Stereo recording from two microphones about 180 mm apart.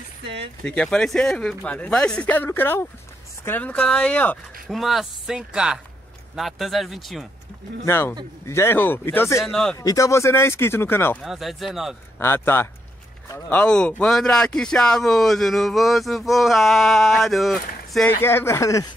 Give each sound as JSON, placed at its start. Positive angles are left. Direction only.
{"t": 0.2, "sound": "speech", "side_deg": -70}
{"t": 0.7, "sound": "speech", "side_deg": 5}
{"t": 7.8, "sound": "speech", "side_deg": 15}
{"t": 9.4, "sound": "speech", "side_deg": 5}
{"t": 9.8, "sound": "speech", "side_deg": 20}
{"t": 11.2, "sound": "speech", "side_deg": 0}
{"t": 12.2, "sound": "speech", "side_deg": 15}
{"t": 18.2, "sound": "speech", "side_deg": 15}